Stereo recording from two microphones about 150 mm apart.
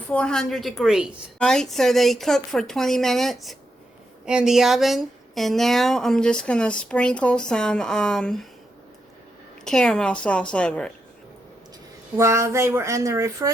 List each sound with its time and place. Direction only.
0.1 s a woman's voice: 5° left (ahead or behind)
9.6 s a woman's voice: 5° left (ahead or behind)
12.1 s speech: 20° right (ahead or behind)